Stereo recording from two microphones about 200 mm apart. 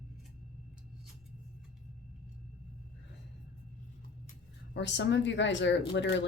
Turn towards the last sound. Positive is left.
turn(degrees=65)  # may be behind; listen again after turning